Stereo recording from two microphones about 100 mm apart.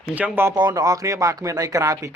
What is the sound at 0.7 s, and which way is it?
Speech, 35° right (ahead or behind).